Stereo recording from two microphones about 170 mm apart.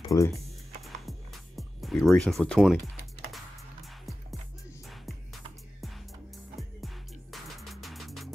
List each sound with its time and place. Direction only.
0.1 s speech: 20° left (ahead or behind)
0.8 s music: centre (ahead or behind)
4.8 s music: centre (ahead or behind)
7.3 s music: centre (ahead or behind)